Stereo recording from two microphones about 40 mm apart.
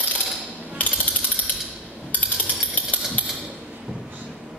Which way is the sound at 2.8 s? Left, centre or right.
Left.